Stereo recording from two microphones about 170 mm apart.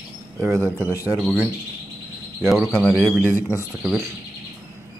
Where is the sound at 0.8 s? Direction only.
15° left (ahead or behind).